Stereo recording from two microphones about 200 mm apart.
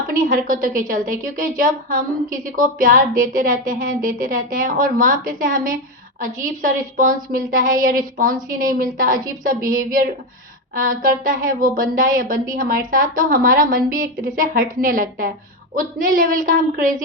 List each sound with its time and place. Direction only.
0.1 s a woman's voice: 40° right (ahead or behind)